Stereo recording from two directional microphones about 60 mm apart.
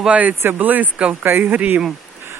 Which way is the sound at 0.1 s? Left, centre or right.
Right.